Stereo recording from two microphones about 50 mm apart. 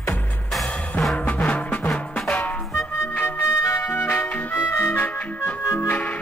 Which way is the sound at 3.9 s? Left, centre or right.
Left.